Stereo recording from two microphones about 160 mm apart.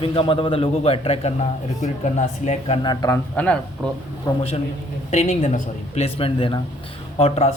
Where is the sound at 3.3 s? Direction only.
10° left (ahead or behind).